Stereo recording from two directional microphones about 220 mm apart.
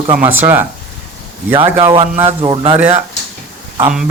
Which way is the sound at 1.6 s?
20° right (ahead or behind).